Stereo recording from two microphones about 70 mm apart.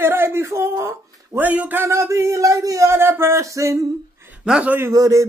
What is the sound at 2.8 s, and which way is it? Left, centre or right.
Speech, right.